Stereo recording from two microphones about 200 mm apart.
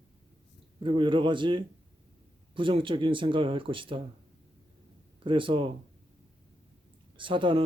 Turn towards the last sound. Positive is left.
turn(degrees=-25)  # may be behind; listen again after turning